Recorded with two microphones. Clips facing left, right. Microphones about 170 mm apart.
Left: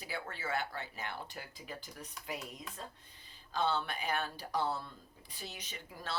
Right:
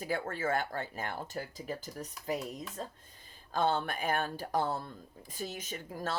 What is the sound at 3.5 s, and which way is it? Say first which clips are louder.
Speech: right 4 dB; 50° right (ahead or behind).